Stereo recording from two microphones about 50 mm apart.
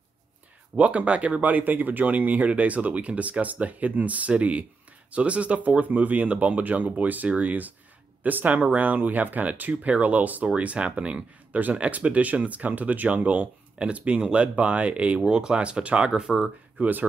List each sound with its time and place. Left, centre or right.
0.7 s speech: right
16.7 s speech: right